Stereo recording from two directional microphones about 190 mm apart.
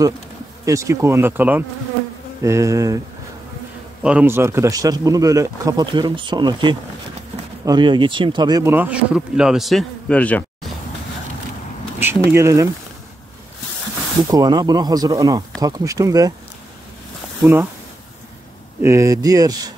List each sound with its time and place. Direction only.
0.7 s speech: 15° right (ahead or behind)
4.0 s speech: 5° right (ahead or behind)
12.0 s speech: 10° right (ahead or behind)
14.3 s speech: 20° right (ahead or behind)
17.4 s speech: 10° right (ahead or behind)
18.8 s speech: 15° right (ahead or behind)